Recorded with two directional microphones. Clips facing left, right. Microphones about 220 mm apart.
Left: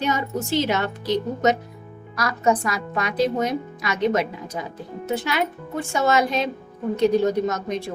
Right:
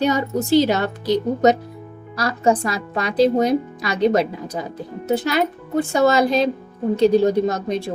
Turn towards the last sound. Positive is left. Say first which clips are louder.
# right 3 dB
turn(degrees=-30)  # may be behind; listen again after turning